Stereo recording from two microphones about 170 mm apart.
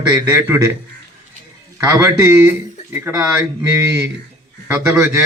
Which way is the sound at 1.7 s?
20° right (ahead or behind).